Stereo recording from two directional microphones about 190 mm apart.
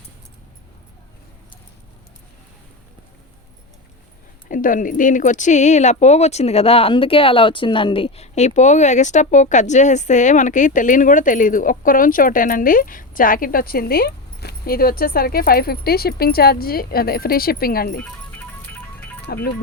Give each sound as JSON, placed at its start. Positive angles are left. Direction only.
{"t": 4.4, "sound": "speech", "side_deg": 45}
{"t": 18.0, "sound": "music", "side_deg": 10}